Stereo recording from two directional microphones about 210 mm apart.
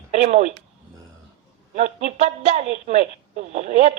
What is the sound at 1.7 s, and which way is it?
A woman's voice, 30° right (ahead or behind).